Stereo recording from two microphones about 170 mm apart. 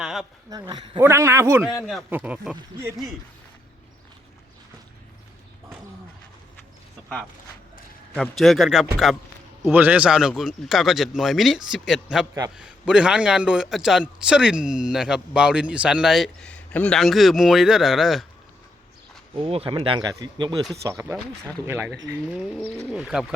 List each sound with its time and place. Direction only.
0.0 s a sound: centre (ahead or behind)
0.5 s a man's voice: 25° right (ahead or behind); by 2.6 s 5° right (ahead or behind)
8.1 s a man's voice: centre (ahead or behind)
19.4 s a man's voice: 35° right (ahead or behind); by 23.3 s 5° right (ahead or behind)